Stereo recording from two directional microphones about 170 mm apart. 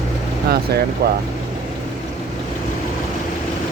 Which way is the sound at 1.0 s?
65° right (ahead or behind).